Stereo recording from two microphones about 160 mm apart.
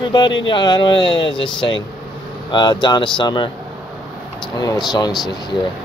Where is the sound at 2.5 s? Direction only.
30° left (ahead or behind).